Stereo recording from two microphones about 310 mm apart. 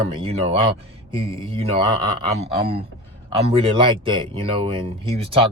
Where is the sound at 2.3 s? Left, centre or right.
Centre.